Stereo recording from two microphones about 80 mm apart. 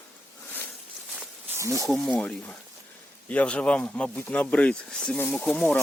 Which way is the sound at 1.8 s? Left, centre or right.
Centre.